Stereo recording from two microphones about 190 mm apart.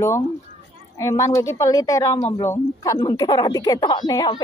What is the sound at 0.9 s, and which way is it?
A woman's voice, 15° left (ahead or behind).